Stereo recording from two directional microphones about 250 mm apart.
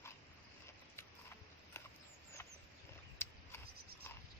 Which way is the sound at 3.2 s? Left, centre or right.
Centre.